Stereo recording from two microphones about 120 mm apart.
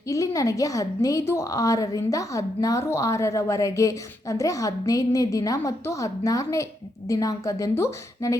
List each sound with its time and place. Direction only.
0.1 s a woman's voice: 30° left (ahead or behind)